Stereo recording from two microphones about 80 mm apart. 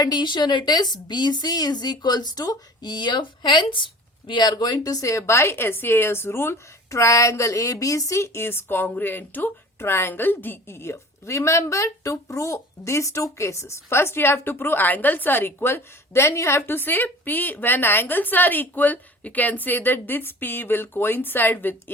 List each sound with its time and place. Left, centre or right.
0.0 s a woman's voice: left
4.3 s a woman's voice: left